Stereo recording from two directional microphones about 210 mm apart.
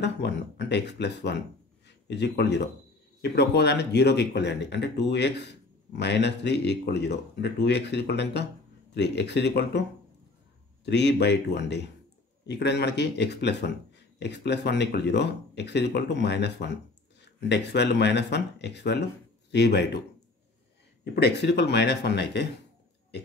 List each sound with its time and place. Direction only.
0.0 s speech: 55° left (ahead or behind)
10.9 s speech: 55° left (ahead or behind)
21.0 s speech: 50° left (ahead or behind)